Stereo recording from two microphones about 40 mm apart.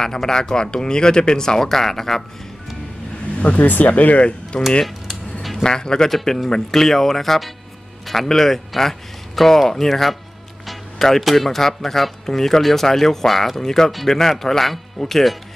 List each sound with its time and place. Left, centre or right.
0.0 s speech: centre
3.3 s speech: left
4.8 s cutlery: centre
5.6 s speech: centre
6.0 s speech: centre